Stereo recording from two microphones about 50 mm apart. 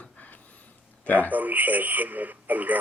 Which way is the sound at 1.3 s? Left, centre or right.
Right.